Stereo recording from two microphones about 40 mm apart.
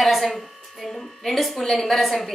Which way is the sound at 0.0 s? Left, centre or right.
Centre.